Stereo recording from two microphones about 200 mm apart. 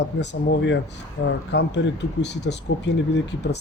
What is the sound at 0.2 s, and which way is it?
Speech, 60° left (ahead or behind).